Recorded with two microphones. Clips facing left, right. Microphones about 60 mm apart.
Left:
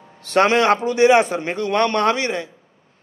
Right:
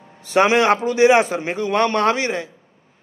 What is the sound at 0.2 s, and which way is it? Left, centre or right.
A man's voice, centre.